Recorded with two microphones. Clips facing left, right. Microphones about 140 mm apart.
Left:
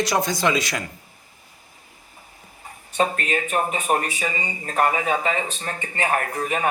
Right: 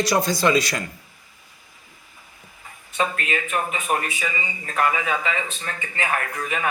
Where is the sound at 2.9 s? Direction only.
35° left (ahead or behind).